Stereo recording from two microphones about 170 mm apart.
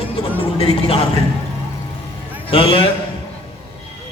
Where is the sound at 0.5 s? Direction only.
35° left (ahead or behind).